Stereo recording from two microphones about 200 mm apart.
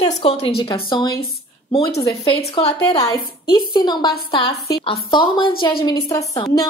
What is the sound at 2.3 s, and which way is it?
A woman's voice, 30° left (ahead or behind).